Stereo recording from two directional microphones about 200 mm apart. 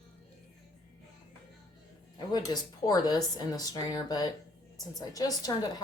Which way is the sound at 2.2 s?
20° left (ahead or behind).